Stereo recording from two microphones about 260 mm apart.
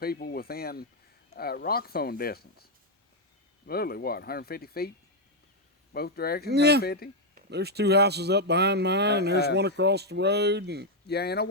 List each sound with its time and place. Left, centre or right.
0.0 s speech: left
3.7 s speech: left
5.9 s speech: left
6.5 s speech: right
6.8 s speech: left
7.3 s speech: right
11.0 s speech: left